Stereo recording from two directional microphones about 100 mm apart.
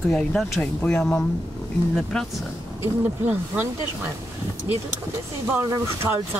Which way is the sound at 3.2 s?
15° right (ahead or behind).